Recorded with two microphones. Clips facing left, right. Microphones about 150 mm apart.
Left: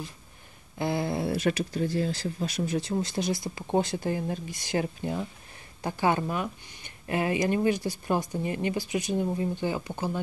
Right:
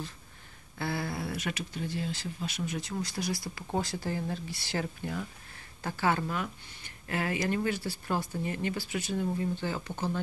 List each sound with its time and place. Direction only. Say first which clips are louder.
0.7 s speech: left 6 dB; 20° left (ahead or behind)